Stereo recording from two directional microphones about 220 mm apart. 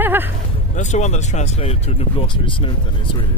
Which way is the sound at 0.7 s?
30° left (ahead or behind).